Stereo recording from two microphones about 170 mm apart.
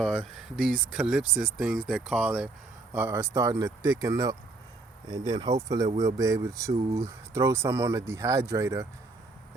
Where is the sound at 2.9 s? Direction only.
15° right (ahead or behind).